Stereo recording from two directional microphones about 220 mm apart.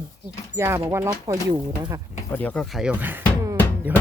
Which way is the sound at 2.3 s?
5° left (ahead or behind).